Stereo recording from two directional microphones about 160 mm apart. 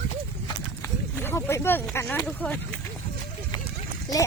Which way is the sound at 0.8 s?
15° left (ahead or behind).